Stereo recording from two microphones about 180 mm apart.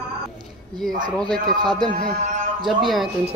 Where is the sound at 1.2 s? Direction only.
5° left (ahead or behind).